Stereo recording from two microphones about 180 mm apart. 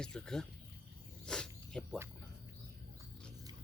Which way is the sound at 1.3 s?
5° left (ahead or behind).